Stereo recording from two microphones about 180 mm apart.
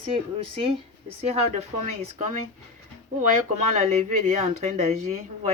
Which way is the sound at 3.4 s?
40° right (ahead or behind).